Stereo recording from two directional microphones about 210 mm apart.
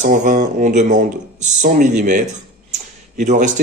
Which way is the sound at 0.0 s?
35° right (ahead or behind).